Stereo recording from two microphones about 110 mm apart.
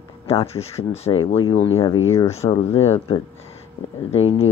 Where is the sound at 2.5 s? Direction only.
65° left (ahead or behind).